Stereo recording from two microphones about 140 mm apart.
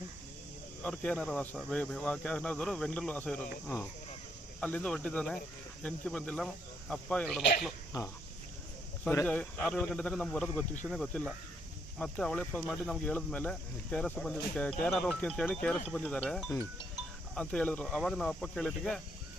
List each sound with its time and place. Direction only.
0.8 s speech: 5° left (ahead or behind)
4.6 s speech: 5° left (ahead or behind)
7.9 s speech: 25° left (ahead or behind)
9.2 s speech: 10° left (ahead or behind)
13.1 s speech: 10° left (ahead or behind)